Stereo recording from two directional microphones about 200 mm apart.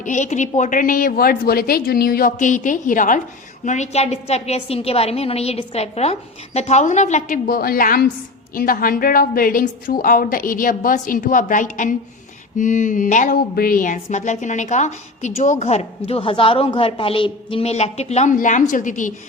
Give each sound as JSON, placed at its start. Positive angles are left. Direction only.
{"t": 0.0, "sound": "a woman's voice", "side_deg": 40}